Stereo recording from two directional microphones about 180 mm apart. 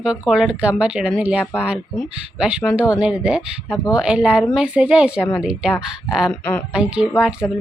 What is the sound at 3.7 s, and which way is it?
Speech, 20° left (ahead or behind).